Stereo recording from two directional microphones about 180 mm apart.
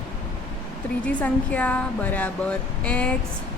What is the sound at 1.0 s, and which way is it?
Speech, 10° left (ahead or behind).